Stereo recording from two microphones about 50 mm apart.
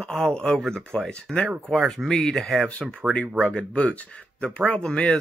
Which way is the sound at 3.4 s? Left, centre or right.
Left.